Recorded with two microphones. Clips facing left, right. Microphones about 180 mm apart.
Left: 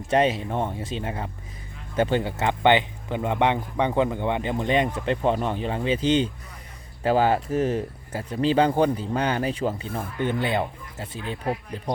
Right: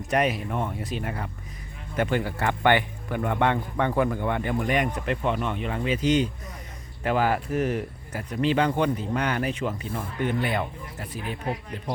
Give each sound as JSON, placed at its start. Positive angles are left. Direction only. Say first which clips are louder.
{"t": 0.1, "sound": "speech", "louder": "left 3 dB", "side_deg": 25}